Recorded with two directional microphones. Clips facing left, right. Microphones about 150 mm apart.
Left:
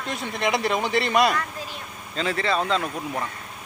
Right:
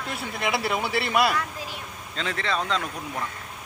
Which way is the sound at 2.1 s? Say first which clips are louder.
Left 4 dB; 5° left (ahead or behind).